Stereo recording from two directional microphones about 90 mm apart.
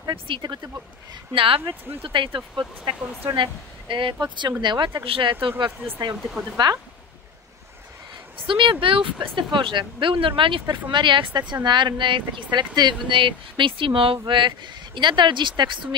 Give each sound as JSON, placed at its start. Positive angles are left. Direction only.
{"t": 0.1, "sound": "speech", "side_deg": -65}
{"t": 1.3, "sound": "speech", "side_deg": -75}
{"t": 5.0, "sound": "speech", "side_deg": -75}
{"t": 6.6, "sound": "speech", "side_deg": -55}
{"t": 8.4, "sound": "speech", "side_deg": -70}
{"t": 10.9, "sound": "speech", "side_deg": -60}